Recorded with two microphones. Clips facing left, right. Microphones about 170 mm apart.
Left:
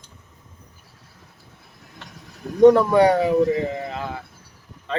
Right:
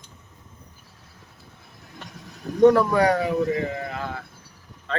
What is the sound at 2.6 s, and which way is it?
Speech, 20° left (ahead or behind).